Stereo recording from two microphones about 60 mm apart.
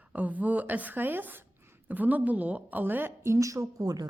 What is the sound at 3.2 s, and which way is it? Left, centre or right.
Speech, right.